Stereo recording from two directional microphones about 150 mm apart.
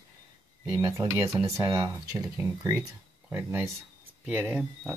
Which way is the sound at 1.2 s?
20° right (ahead or behind).